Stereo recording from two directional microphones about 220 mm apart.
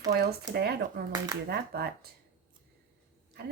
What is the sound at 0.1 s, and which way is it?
Speech, 50° right (ahead or behind).